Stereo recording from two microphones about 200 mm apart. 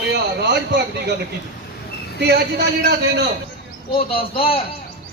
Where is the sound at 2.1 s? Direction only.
55° right (ahead or behind).